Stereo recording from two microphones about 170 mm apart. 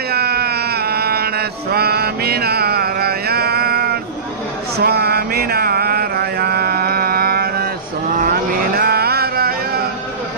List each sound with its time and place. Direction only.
0.1 s a sound: 65° right (ahead or behind)
4.7 s mantra: 70° right (ahead or behind)
8.2 s vehicle: 60° right (ahead or behind)